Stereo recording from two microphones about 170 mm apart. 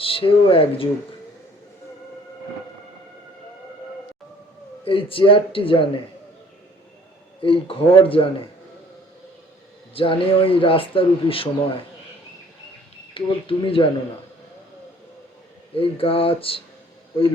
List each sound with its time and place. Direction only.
0.0 s speech: 30° left (ahead or behind)
4.9 s speech: 30° left (ahead or behind)
7.4 s speech: 30° left (ahead or behind)
9.9 s speech: 30° left (ahead or behind)
13.1 s speech: 30° left (ahead or behind)
15.7 s speech: 30° left (ahead or behind)